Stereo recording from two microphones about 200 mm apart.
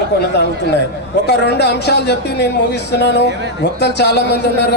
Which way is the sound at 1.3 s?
55° left (ahead or behind).